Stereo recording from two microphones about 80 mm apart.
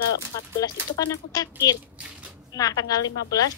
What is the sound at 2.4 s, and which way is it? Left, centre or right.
A woman's voice, left.